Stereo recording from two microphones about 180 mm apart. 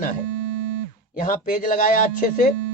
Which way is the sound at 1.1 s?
45° left (ahead or behind).